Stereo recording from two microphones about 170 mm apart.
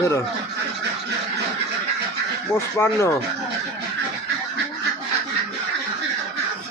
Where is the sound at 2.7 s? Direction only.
15° left (ahead or behind).